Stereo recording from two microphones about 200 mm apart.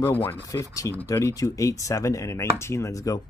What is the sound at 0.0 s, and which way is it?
Speech, 10° left (ahead or behind).